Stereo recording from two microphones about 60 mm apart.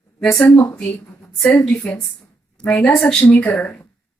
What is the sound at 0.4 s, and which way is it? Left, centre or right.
Speech, left.